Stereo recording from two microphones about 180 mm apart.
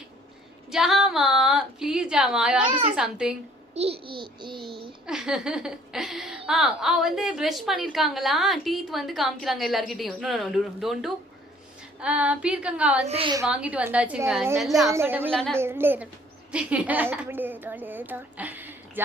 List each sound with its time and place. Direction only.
0.7 s speech: centre (ahead or behind)
3.8 s a child's voice: 30° right (ahead or behind)
5.0 s speech: 5° right (ahead or behind)
11.9 s female singing: 5° right (ahead or behind)
13.0 s a woman's voice: 35° right (ahead or behind)
13.5 s female singing: 5° right (ahead or behind)
14.6 s speech: centre (ahead or behind)
14.8 s female singing: 15° right (ahead or behind)
15.3 s speech: centre (ahead or behind)
15.5 s female singing: 10° right (ahead or behind)
16.5 s a woman's voice: 5° right (ahead or behind)